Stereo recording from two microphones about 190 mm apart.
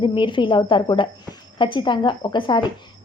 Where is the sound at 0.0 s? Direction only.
25° left (ahead or behind).